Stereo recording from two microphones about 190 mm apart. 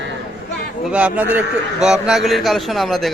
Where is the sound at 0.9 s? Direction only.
5° right (ahead or behind).